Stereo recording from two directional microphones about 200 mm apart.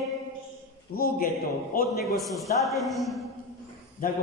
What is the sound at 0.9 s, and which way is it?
Speech, 50° left (ahead or behind).